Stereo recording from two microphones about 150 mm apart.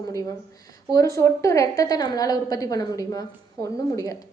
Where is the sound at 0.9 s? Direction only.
20° left (ahead or behind).